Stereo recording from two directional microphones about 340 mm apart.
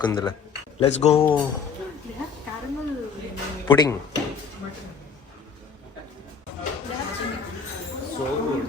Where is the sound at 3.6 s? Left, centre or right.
Centre.